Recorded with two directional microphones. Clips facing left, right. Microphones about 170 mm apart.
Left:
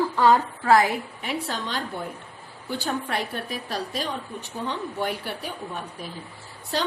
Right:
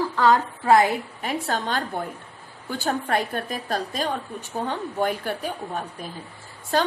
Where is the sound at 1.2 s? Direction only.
45° right (ahead or behind).